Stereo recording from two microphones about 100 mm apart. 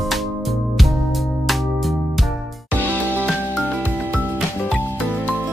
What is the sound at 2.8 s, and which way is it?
Music, 20° left (ahead or behind).